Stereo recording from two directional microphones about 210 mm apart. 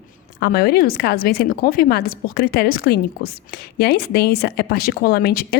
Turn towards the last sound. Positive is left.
turn(degrees=50)  # may be behind; listen again after turning